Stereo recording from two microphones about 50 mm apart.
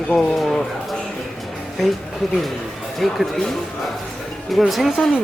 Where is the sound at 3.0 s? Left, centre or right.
Centre.